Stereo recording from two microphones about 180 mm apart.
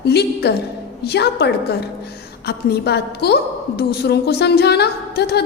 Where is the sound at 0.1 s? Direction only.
65° left (ahead or behind).